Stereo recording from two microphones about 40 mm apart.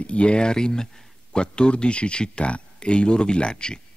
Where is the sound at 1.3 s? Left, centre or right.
Left.